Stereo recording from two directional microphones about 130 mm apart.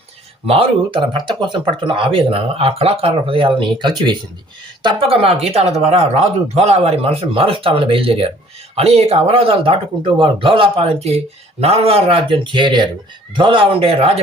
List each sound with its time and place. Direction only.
0.4 s speech: 45° right (ahead or behind)